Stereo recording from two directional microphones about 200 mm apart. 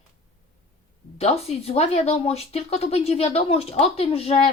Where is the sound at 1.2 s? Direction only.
30° left (ahead or behind).